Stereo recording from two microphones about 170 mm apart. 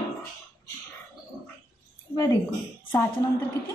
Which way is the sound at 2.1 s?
20° left (ahead or behind).